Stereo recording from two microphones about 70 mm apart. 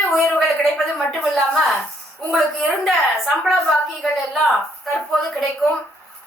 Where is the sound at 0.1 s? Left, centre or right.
Centre.